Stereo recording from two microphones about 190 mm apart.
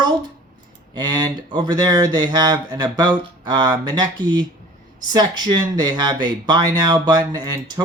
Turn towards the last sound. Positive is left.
turn(degrees=-20)  # may be behind; listen again after turning